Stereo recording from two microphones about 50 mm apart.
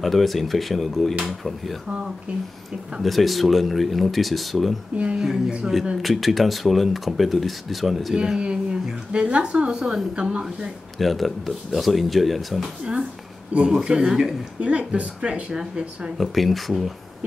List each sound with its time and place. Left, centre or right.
0.0 s speech: centre
3.0 s speech: centre
5.1 s speech: centre
6.0 s speech: centre
8.2 s a woman's voice: centre
11.0 s speech: centre
13.7 s speech: centre
14.6 s speech: right
16.2 s speech: centre